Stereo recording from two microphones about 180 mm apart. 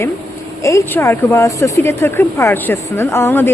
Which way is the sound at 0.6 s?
15° left (ahead or behind).